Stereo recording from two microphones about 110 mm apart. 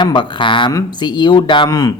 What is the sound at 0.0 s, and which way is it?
Speech, 45° left (ahead or behind).